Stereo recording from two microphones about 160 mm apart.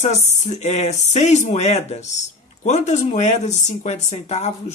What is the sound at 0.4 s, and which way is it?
Speech, 45° left (ahead or behind).